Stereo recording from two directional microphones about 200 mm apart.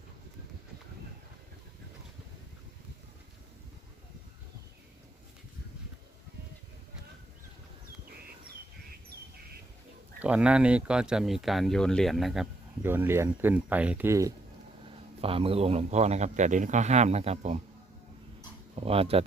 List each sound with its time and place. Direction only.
10.2 s speech: 5° right (ahead or behind)
14.8 s speech: 25° right (ahead or behind)
18.8 s speech: 30° right (ahead or behind)